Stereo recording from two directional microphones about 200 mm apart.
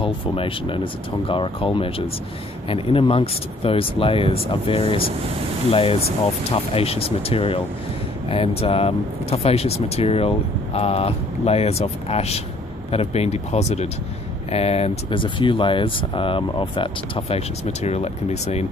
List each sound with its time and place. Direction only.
0.0 s speech: 25° left (ahead or behind)